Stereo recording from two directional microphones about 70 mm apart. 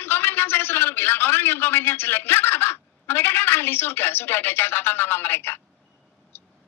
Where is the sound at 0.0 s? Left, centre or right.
Left.